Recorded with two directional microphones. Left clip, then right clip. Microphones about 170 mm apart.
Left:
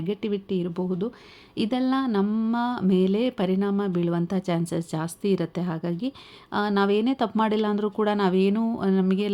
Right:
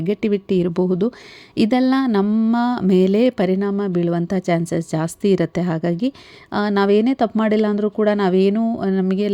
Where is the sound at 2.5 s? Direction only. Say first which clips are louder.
Right 7 dB; 40° right (ahead or behind).